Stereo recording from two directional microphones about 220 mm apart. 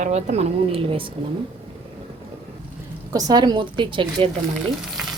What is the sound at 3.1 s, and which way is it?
A woman's voice, 15° right (ahead or behind).